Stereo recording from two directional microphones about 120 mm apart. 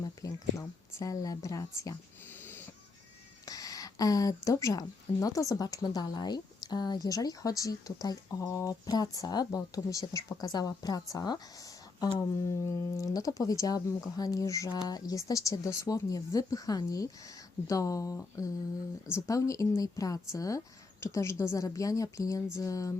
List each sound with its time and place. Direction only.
0.0 s speech: 30° left (ahead or behind)
3.4 s speech: 30° left (ahead or behind)